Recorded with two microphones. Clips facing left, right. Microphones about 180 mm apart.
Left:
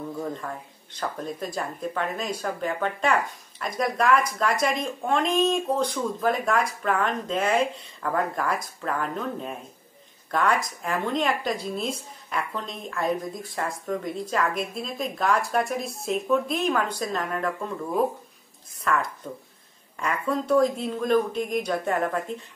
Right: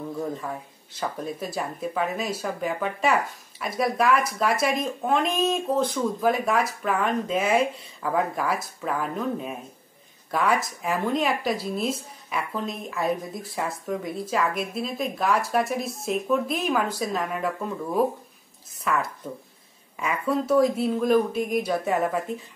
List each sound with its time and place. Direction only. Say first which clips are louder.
0.3 s speech: right 2 dB; 5° right (ahead or behind)